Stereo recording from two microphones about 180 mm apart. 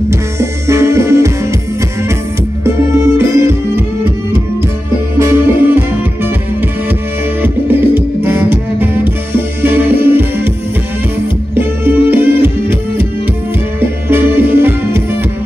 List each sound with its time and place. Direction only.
0.4 s music: 15° right (ahead or behind)
2.6 s music: 15° right (ahead or behind)
5.2 s music: 15° right (ahead or behind)
7.4 s music: 10° right (ahead or behind)
12.1 s music: 10° right (ahead or behind)